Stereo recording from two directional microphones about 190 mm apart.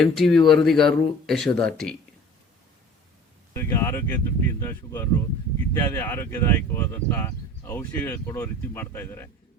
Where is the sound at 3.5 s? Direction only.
15° left (ahead or behind).